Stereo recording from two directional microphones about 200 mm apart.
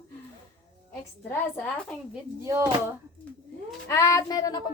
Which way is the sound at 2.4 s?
15° right (ahead or behind).